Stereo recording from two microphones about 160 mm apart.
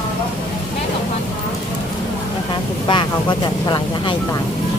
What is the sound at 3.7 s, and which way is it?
Speech, 30° left (ahead or behind).